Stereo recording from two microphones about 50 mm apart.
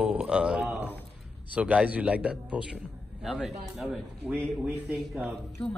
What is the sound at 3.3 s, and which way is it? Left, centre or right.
Speech, centre.